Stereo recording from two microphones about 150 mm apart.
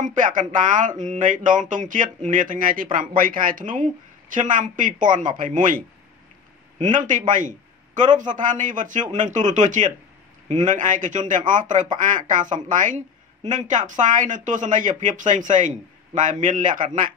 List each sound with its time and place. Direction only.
0.0 s speech: 60° right (ahead or behind)